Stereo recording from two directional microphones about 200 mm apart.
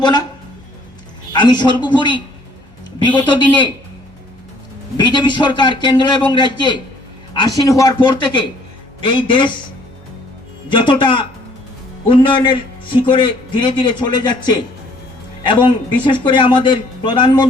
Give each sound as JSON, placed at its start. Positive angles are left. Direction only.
{"t": 0.0, "sound": "a man's voice", "side_deg": 20}
{"t": 1.3, "sound": "a man's voice", "side_deg": 20}
{"t": 4.9, "sound": "a man's voice", "side_deg": 20}
{"t": 10.7, "sound": "a man's voice", "side_deg": 25}